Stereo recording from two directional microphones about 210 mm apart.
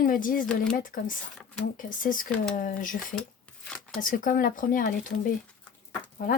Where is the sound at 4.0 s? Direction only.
40° left (ahead or behind).